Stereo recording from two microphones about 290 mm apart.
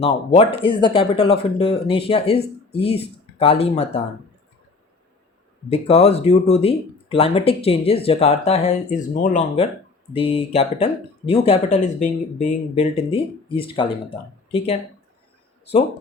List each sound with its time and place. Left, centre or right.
0.3 s speech: centre
5.7 s speech: left